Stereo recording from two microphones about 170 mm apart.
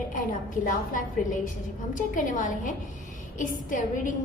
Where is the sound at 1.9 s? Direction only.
50° left (ahead or behind).